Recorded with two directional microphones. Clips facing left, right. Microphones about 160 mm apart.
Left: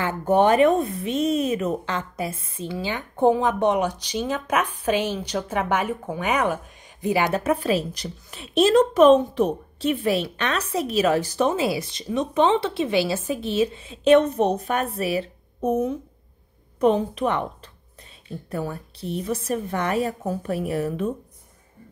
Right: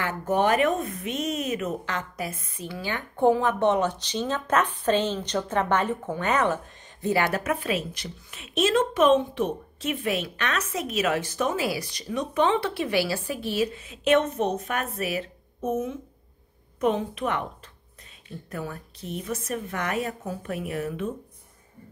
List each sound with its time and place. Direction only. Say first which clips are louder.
0.0 s speech: left 5 dB; 30° left (ahead or behind)
7.4 s a woman's voice: left 5 dB; 35° left (ahead or behind)